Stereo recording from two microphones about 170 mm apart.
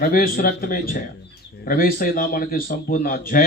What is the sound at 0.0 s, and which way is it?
Speech, 55° left (ahead or behind).